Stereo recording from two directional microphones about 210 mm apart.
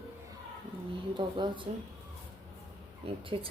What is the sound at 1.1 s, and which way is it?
Speech, 25° right (ahead or behind).